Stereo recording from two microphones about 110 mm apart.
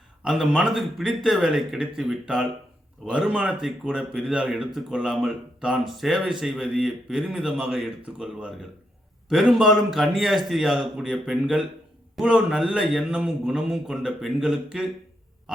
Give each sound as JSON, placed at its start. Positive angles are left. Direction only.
{"t": 0.2, "sound": "a man's voice", "side_deg": -5}